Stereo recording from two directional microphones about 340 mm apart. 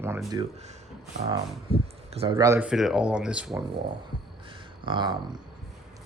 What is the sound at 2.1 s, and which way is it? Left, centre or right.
Speech, centre.